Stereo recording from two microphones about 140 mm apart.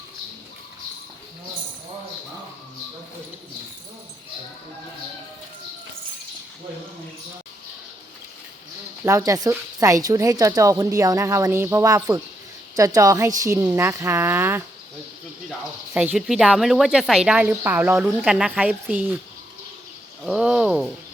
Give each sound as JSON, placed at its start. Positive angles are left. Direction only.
{"t": 9.0, "sound": "speech", "side_deg": -25}
{"t": 16.1, "sound": "speech", "side_deg": -5}
{"t": 20.2, "sound": "speech", "side_deg": -5}